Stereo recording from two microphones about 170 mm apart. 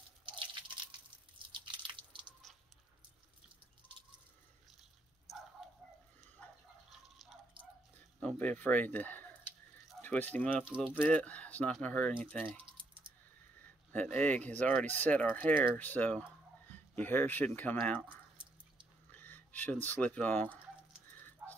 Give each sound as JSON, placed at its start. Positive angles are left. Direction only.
{"t": 0.4, "sound": "crunch", "side_deg": -30}
{"t": 1.7, "sound": "drip", "side_deg": -30}
{"t": 2.5, "sound": "a sound", "side_deg": 0}
{"t": 6.9, "sound": "drip", "side_deg": 0}
{"t": 8.2, "sound": "speech", "side_deg": 10}
{"t": 14.1, "sound": "speech", "side_deg": 10}